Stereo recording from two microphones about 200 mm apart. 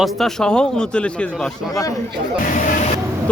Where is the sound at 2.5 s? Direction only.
40° left (ahead or behind).